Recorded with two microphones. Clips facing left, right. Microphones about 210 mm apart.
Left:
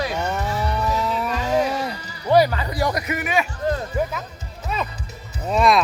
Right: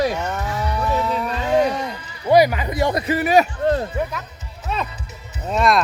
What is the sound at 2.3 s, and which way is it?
A man's voice, 15° right (ahead or behind).